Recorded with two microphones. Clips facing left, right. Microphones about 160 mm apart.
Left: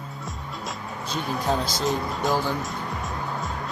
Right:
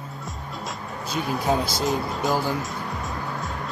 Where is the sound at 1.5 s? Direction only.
10° right (ahead or behind).